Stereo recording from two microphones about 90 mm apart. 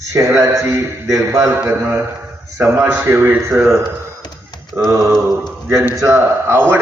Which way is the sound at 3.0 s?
25° right (ahead or behind).